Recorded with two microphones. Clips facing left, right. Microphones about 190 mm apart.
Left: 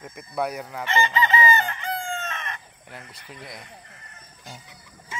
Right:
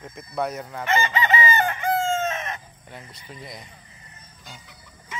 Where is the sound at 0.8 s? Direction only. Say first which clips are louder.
Right 1 dB; 45° right (ahead or behind).